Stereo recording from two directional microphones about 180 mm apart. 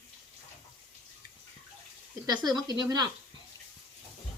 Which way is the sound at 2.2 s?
25° right (ahead or behind).